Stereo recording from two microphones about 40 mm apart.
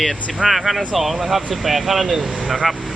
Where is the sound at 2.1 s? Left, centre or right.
Centre.